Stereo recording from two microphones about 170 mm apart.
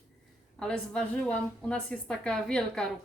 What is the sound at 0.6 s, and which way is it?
A woman's voice, 5° left (ahead or behind).